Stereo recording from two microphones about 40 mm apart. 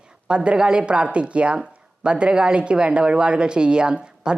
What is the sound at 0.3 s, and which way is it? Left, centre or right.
Speech, right.